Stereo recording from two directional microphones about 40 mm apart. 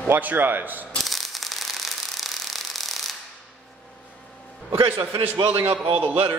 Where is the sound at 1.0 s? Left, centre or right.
Centre.